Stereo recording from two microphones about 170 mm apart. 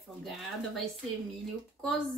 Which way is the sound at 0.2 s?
Centre (ahead or behind).